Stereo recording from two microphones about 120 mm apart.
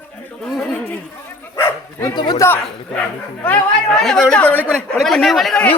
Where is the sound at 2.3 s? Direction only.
20° left (ahead or behind).